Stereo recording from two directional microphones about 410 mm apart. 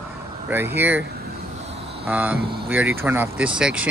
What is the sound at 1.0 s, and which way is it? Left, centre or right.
Vehicle, right.